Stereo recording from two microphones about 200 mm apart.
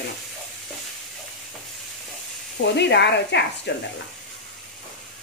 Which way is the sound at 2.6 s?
60° left (ahead or behind).